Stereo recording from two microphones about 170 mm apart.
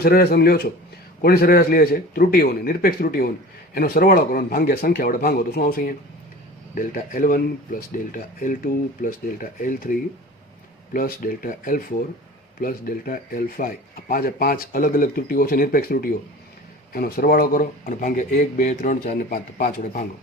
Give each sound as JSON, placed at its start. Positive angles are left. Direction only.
{"t": 0.0, "sound": "a man's voice", "side_deg": 65}